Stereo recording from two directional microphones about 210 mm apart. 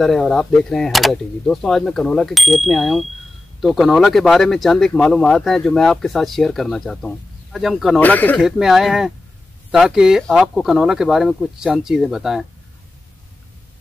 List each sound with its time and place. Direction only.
0.0 s speech: centre (ahead or behind)